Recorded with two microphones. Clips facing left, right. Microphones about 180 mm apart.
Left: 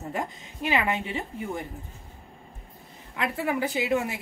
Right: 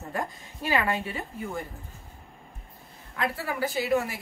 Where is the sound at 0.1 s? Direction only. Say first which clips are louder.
Right 1 dB; 20° left (ahead or behind).